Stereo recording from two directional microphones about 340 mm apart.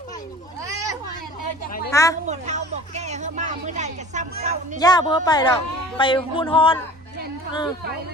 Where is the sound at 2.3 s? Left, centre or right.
Centre.